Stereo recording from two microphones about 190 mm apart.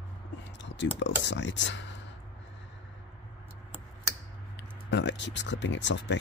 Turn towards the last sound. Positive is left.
turn(degrees=70)  # may be behind; listen again after turning